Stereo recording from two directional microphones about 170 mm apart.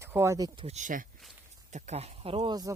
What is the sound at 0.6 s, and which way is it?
Speech, 45° right (ahead or behind).